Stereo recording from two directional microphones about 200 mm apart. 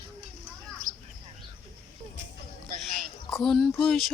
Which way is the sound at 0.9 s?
40° right (ahead or behind).